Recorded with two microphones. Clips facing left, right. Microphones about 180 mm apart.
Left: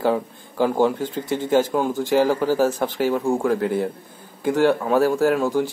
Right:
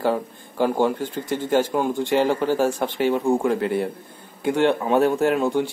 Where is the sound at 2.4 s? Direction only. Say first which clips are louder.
Left 1 dB; 15° right (ahead or behind).